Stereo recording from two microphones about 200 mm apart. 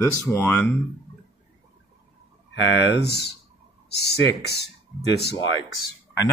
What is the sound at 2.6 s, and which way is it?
Speech, 60° left (ahead or behind).